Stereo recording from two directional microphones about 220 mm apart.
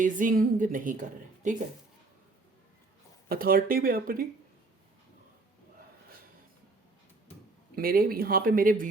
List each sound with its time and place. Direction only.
0.0 s a woman's voice: 35° right (ahead or behind)
3.2 s a woman's voice: 40° right (ahead or behind)
7.8 s a woman's voice: 40° right (ahead or behind)